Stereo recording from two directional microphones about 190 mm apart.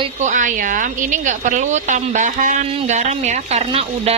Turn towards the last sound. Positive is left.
turn(degrees=-30)  # may be behind; listen again after turning